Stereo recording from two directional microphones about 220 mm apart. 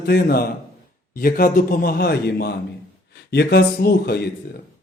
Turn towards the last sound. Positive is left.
turn(degrees=45)  # may be behind; listen again after turning